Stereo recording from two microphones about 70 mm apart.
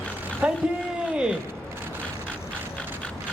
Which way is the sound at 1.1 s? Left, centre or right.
Centre.